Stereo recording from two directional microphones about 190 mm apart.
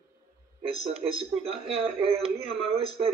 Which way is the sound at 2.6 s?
30° right (ahead or behind).